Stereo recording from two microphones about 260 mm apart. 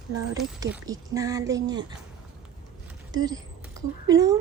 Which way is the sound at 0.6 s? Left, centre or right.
Centre.